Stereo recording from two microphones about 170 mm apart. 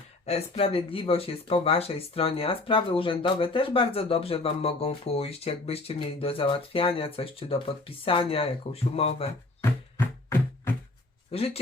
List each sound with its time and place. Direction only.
0.3 s speech: 35° left (ahead or behind)
11.3 s speech: 35° left (ahead or behind)